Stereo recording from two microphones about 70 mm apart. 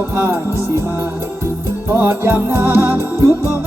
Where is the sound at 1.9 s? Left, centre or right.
Right.